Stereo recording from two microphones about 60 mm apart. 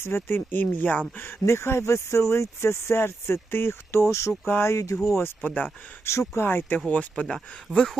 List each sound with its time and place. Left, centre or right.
0.0 s speech: left
1.2 s speech: left
4.1 s speech: left
4.4 s speech: left
4.7 s speech: left
5.4 s speech: left
6.1 s speech: left
6.9 s speech: left